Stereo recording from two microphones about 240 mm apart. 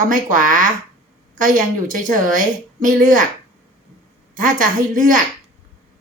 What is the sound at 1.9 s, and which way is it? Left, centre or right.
A woman's voice, right.